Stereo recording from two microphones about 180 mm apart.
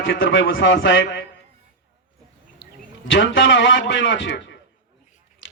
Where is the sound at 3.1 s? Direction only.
90° left.